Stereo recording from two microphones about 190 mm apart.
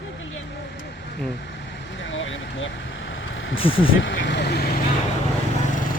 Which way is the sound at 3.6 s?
30° left (ahead or behind).